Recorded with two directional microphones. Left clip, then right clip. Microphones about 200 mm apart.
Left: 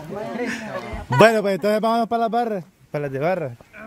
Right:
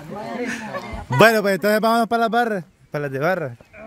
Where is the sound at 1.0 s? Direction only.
10° right (ahead or behind).